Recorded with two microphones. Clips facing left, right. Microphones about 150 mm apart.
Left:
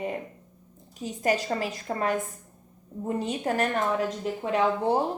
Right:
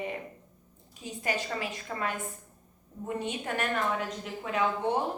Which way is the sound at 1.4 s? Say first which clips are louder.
Left 6 dB; 40° left (ahead or behind).